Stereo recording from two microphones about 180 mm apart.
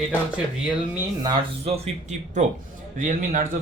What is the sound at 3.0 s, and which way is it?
Speech, 45° right (ahead or behind).